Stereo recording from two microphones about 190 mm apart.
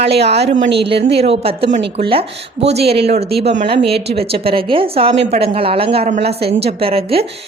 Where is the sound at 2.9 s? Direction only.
35° right (ahead or behind).